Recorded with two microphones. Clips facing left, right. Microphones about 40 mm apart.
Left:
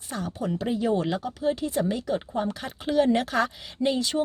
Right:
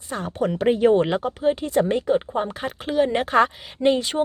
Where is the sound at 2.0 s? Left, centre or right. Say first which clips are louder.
Right 6 dB; right.